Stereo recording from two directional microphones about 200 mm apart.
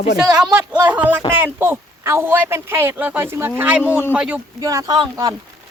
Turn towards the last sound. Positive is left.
turn(degrees=-20)  # may be behind; listen again after turning